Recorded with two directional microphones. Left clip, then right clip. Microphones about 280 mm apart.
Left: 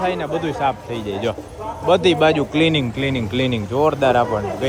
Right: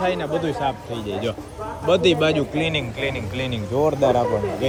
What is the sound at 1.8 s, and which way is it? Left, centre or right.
Speech, centre.